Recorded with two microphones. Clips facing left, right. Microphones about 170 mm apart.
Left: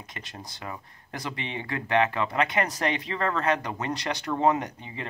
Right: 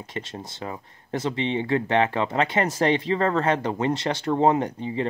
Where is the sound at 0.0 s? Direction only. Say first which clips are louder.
Right 8 dB; 30° right (ahead or behind).